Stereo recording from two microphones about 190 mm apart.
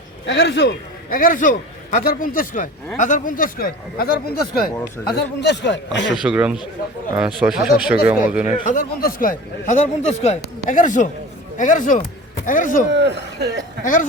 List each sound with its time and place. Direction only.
0.3 s speech: 65° left (ahead or behind)
1.1 s speech: 45° left (ahead or behind)
5.0 s speech: 60° left (ahead or behind)
6.1 s a man's voice: 5° right (ahead or behind)
8.6 s speech: 45° left (ahead or behind)
12.9 s speech: 65° right (ahead or behind)
13.8 s speech: 45° left (ahead or behind)